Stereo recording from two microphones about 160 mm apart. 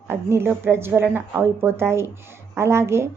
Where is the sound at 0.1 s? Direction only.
15° right (ahead or behind).